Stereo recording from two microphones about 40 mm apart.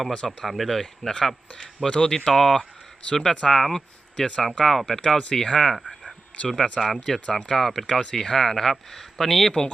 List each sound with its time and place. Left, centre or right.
0.3 s speech: centre
0.7 s speech: centre
1.9 s speech: centre
6.3 s speech: left
6.7 s speech: centre